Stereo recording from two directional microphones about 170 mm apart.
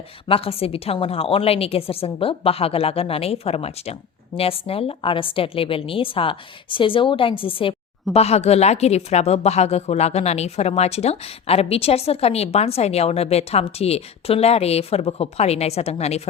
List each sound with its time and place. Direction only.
0.3 s a woman's voice: 35° left (ahead or behind)